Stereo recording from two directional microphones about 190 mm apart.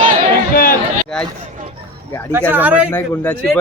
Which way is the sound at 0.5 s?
50° left (ahead or behind).